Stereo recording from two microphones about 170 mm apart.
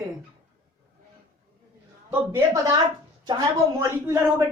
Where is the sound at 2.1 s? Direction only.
15° right (ahead or behind).